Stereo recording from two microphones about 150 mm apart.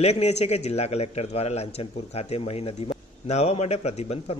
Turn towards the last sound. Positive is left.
turn(degrees=45)  # may be behind; listen again after turning